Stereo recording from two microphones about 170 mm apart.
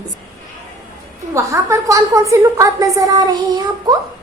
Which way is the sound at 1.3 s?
20° right (ahead or behind).